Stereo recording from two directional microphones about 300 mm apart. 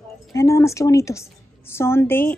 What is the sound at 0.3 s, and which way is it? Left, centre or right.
A woman's voice, centre.